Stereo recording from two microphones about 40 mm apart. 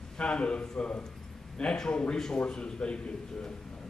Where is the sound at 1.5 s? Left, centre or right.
Centre.